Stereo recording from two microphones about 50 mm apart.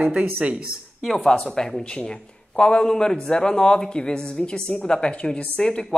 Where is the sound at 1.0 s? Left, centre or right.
Centre.